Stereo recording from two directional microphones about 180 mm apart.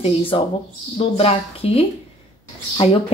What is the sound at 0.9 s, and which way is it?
Speech, 35° left (ahead or behind).